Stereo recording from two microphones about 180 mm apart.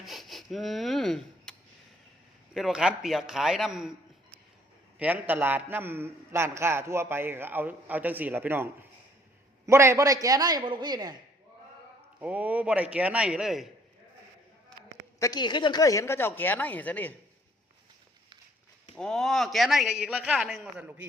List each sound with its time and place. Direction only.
0.0 s rub: centre (ahead or behind)
2.5 s a man's voice: 5° right (ahead or behind)
4.9 s a man's voice: 10° right (ahead or behind)
12.2 s a man's voice: 10° right (ahead or behind)
15.2 s speech: 20° left (ahead or behind)
18.9 s a man's voice: 5° left (ahead or behind)